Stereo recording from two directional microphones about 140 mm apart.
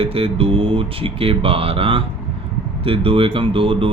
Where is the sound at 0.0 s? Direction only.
40° right (ahead or behind).